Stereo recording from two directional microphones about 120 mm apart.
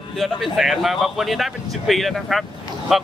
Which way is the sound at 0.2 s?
Centre (ahead or behind).